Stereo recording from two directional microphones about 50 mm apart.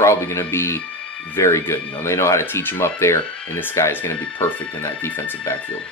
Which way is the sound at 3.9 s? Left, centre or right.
Left.